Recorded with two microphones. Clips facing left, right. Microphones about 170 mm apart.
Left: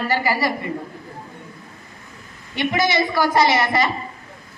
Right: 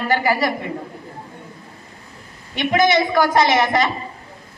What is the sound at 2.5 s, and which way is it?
A man's voice, 20° right (ahead or behind).